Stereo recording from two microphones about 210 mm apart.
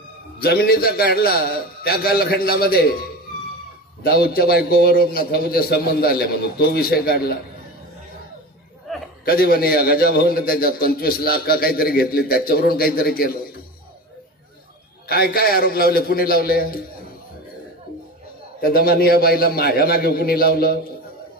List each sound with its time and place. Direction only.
0.4 s a man's voice: 45° left (ahead or behind)
4.0 s a man's voice: 45° left (ahead or behind)
8.8 s a sound: centre (ahead or behind)
9.2 s a man's voice: 45° left (ahead or behind)
15.0 s a man's voice: 45° left (ahead or behind)
18.6 s a man's voice: 45° left (ahead or behind)